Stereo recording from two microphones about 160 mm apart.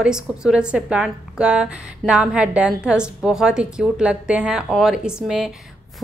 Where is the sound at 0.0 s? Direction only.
5° right (ahead or behind).